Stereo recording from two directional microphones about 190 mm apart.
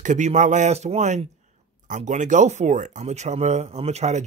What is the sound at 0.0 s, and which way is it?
Speech, 40° right (ahead or behind).